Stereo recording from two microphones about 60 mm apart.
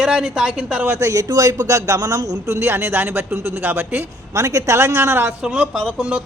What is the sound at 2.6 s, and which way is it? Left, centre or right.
Speech, right.